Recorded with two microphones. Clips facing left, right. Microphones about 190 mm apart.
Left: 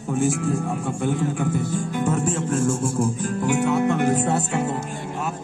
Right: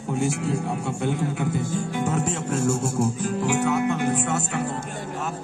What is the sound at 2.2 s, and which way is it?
Speech, 50° left (ahead or behind).